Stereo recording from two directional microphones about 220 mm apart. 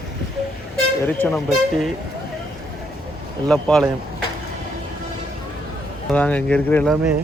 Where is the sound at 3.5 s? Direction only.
Centre (ahead or behind).